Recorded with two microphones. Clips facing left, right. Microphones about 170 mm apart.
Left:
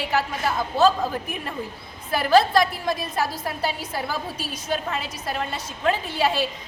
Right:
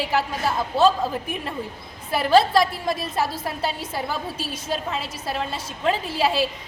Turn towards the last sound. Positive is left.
turn(degrees=0)  # may be behind; listen again after turning